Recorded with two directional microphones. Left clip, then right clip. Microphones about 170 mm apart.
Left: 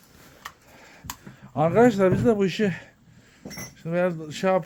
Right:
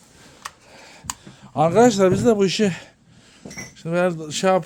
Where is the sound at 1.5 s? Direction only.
15° right (ahead or behind).